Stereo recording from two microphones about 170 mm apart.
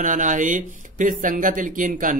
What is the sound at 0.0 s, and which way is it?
Speech, 50° right (ahead or behind).